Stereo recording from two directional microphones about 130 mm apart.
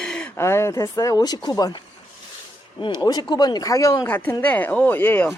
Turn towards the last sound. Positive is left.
turn(degrees=15)  # may be behind; listen again after turning